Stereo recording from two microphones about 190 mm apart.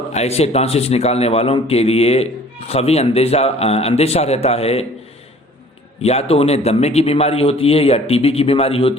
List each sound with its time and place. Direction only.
0.1 s a man's voice: 35° left (ahead or behind)
6.0 s a man's voice: 35° left (ahead or behind)